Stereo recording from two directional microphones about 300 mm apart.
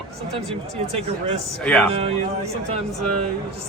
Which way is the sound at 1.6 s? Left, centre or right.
Centre.